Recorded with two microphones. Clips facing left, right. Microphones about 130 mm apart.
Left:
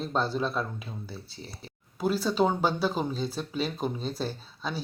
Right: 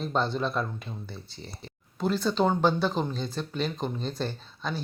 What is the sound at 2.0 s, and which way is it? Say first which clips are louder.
Speech: even; 5° left (ahead or behind).